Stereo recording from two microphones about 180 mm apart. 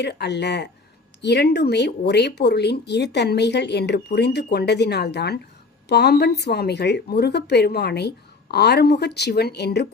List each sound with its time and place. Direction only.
0.0 s a woman's voice: 70° left (ahead or behind)